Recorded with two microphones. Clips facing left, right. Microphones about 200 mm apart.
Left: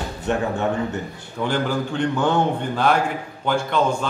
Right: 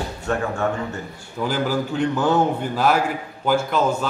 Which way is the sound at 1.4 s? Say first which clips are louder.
Even; 5° right (ahead or behind).